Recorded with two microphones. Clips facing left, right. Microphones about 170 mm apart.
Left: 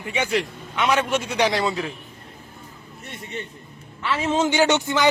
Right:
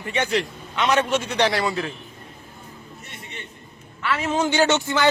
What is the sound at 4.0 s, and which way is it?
A man's voice, 25° left (ahead or behind).